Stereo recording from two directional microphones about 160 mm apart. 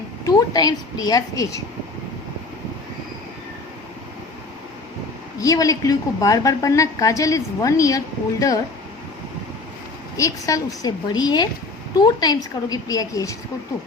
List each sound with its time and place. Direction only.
0.3 s a woman's voice: 25° left (ahead or behind)
5.4 s a woman's voice: 20° left (ahead or behind)
10.2 s a woman's voice: 20° left (ahead or behind)